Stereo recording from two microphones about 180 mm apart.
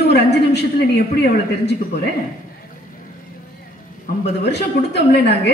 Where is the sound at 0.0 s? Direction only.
70° left (ahead or behind).